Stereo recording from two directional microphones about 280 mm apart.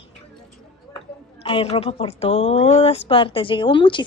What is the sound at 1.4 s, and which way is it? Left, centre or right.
A woman's voice, centre.